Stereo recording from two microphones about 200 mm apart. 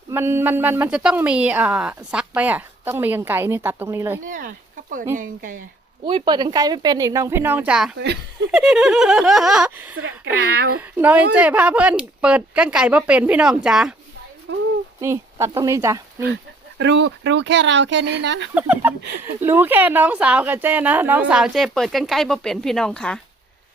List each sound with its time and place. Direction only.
0.1 s speech: 10° right (ahead or behind)
4.2 s speech: 40° right (ahead or behind)
6.1 s speech: 25° right (ahead or behind); by 7.9 s 5° right (ahead or behind)
7.9 s speech: 55° right (ahead or behind)
8.4 s speech: centre (ahead or behind)
14.5 s speech: 60° right (ahead or behind)
15.0 s speech: 15° right (ahead or behind)
16.2 s speech: 60° right (ahead or behind)
18.5 s speech: 10° right (ahead or behind)